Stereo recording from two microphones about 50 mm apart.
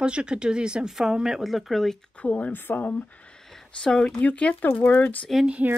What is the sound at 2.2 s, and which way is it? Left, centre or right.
Speech, left.